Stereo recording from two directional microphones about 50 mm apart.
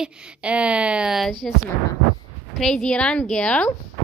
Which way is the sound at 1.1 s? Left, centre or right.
Centre.